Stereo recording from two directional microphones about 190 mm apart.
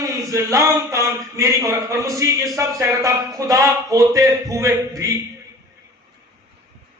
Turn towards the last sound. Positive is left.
turn(degrees=-15)  # may be behind; listen again after turning